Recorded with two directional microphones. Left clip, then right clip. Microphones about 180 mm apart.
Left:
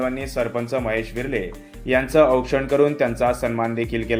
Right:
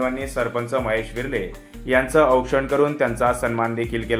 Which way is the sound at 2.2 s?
15° left (ahead or behind).